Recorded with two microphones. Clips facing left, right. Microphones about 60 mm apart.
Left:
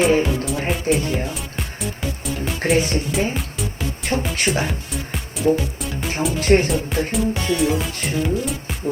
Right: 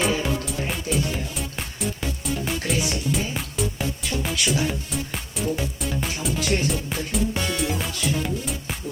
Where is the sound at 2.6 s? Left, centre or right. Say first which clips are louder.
Left 7 dB; left.